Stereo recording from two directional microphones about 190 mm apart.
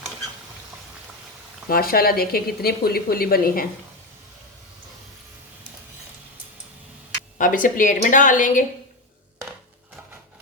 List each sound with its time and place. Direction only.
1.7 s speech: 50° left (ahead or behind)
7.3 s speech: 45° left (ahead or behind)